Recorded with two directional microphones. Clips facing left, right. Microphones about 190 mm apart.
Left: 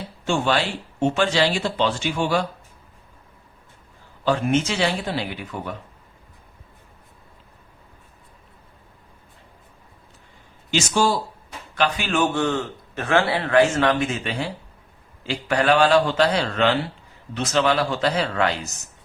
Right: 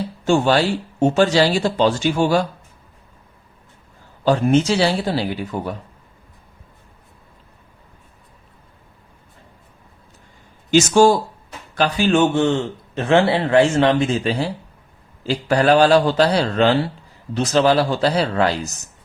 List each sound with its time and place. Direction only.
0.3 s speech: 40° right (ahead or behind)
4.2 s speech: 35° right (ahead or behind)
10.7 s speech: 45° right (ahead or behind)
11.7 s a man's voice: 35° right (ahead or behind)